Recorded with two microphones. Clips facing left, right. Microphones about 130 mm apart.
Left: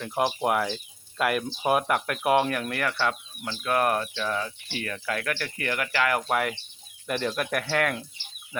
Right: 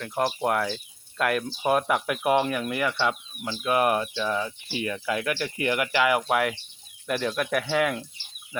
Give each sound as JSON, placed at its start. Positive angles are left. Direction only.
{"t": 0.0, "sound": "speech", "side_deg": 5}